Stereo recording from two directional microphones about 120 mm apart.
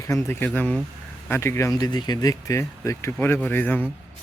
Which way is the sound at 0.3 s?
15° left (ahead or behind).